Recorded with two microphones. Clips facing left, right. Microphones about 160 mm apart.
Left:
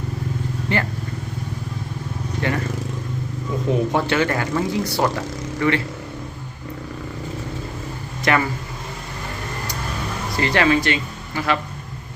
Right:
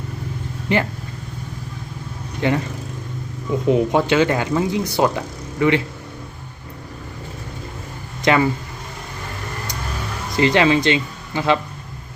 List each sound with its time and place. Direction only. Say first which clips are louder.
0.7 s speech: right 4 dB; 15° right (ahead or behind)
2.4 s speech: right 5 dB; 20° right (ahead or behind)
3.7 s speech: right 4 dB; 15° right (ahead or behind)
8.2 s speech: right 3 dB; 20° right (ahead or behind)
10.3 s speech: right 3 dB; 20° right (ahead or behind)